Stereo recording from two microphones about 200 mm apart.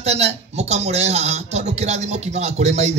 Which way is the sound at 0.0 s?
30° right (ahead or behind).